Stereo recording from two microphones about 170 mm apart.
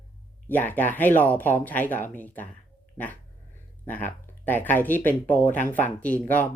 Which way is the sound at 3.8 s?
10° left (ahead or behind).